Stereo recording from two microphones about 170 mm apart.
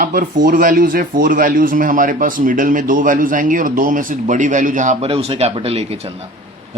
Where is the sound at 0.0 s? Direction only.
55° right (ahead or behind).